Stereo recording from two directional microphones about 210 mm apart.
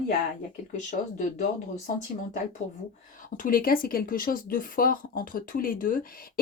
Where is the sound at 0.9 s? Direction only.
35° left (ahead or behind).